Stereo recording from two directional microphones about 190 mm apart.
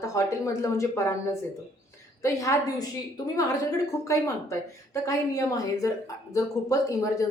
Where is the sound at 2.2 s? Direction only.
15° left (ahead or behind).